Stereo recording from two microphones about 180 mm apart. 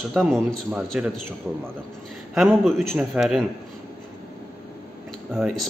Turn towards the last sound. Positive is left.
turn(degrees=-5)  # may be behind; listen again after turning